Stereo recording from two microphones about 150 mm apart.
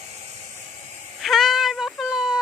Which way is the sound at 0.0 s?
50° right (ahead or behind).